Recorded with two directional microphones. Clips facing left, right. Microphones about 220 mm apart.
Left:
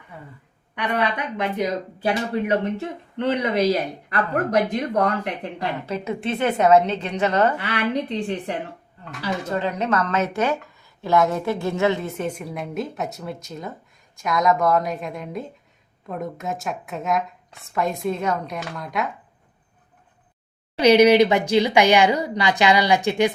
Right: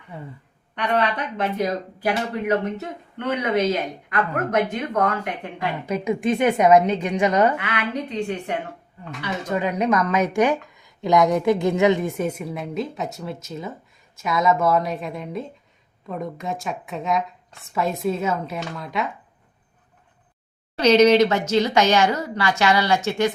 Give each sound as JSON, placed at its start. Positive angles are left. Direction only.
{"t": 0.1, "sound": "a woman's voice", "side_deg": -25}
{"t": 0.8, "sound": "speech", "side_deg": 15}
{"t": 2.0, "sound": "speech", "side_deg": 30}
{"t": 5.8, "sound": "a woman's voice", "side_deg": -15}
{"t": 7.5, "sound": "speech", "side_deg": 35}
{"t": 9.5, "sound": "a woman's voice", "side_deg": -10}
{"t": 20.7, "sound": "speech", "side_deg": 10}